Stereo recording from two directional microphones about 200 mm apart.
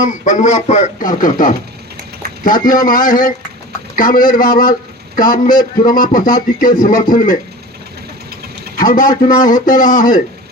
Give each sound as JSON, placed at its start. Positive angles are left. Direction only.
{"t": 0.0, "sound": "a man's voice", "side_deg": 35}
{"t": 8.3, "sound": "engine", "side_deg": -50}
{"t": 8.8, "sound": "a man's voice", "side_deg": 45}